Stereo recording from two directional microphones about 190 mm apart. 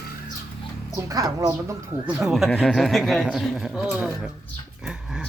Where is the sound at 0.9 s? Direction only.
15° right (ahead or behind).